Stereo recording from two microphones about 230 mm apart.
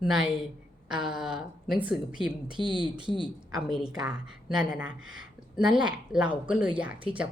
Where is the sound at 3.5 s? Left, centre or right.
Centre.